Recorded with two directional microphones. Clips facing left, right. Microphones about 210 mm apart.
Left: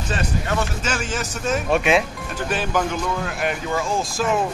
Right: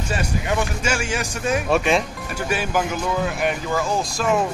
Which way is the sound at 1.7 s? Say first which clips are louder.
Left 1 dB; centre (ahead or behind).